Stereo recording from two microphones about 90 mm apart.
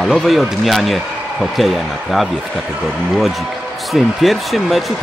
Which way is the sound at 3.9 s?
Centre (ahead or behind).